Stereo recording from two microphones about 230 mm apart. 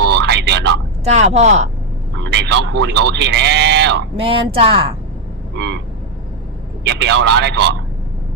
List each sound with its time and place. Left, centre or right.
0.0 s vehicle: right
1.0 s speech: right
2.2 s speech: right
4.2 s speech: right
5.5 s speech: right
6.8 s speech: right